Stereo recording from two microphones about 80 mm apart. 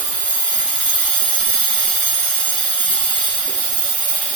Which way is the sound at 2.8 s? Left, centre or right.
Centre.